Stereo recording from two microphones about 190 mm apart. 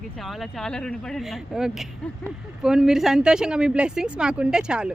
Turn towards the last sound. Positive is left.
turn(degrees=-5)  # may be behind; listen again after turning